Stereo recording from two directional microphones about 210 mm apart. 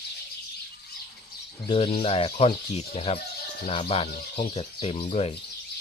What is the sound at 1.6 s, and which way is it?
Speech, 25° left (ahead or behind).